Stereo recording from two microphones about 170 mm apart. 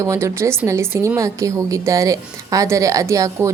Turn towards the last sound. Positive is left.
turn(degrees=-20)  # may be behind; listen again after turning